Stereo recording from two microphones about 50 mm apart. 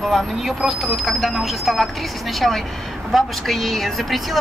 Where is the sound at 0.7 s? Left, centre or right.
Centre.